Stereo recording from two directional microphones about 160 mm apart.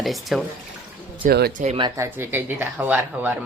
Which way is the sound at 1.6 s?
35° right (ahead or behind).